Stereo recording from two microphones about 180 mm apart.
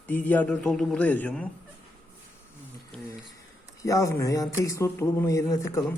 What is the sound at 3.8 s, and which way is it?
Speech, 15° left (ahead or behind).